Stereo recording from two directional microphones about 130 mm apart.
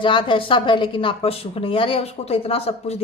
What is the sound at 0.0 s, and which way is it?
Speech, 40° left (ahead or behind).